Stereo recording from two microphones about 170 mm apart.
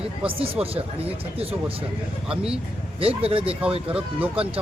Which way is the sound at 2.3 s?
5° right (ahead or behind).